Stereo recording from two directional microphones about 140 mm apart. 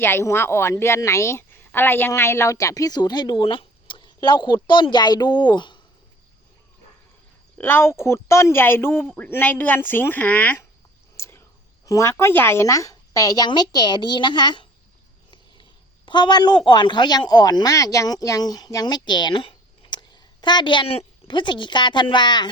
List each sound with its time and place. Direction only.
0.0 s a woman's voice: 15° left (ahead or behind); by 5.8 s 35° left (ahead or behind)
7.6 s speech: 15° left (ahead or behind)
11.2 s cricket: 20° left (ahead or behind)
11.9 s a woman's voice: 20° left (ahead or behind)
16.0 s speech: 35° left (ahead or behind)